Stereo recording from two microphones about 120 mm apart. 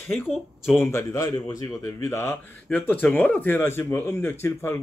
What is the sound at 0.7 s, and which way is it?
A man's voice, 25° left (ahead or behind).